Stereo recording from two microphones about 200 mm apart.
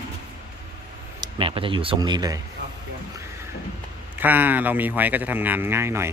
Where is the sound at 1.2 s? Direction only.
25° right (ahead or behind).